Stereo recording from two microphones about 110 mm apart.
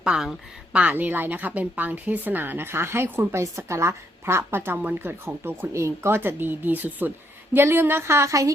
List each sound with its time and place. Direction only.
0.0 s speech: 5° right (ahead or behind); by 8.5 s 30° right (ahead or behind)